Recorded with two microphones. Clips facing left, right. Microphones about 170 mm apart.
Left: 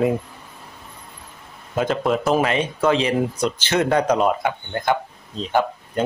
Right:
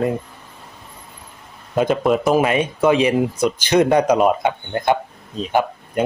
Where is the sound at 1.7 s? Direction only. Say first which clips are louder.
Right 4 dB; 15° right (ahead or behind).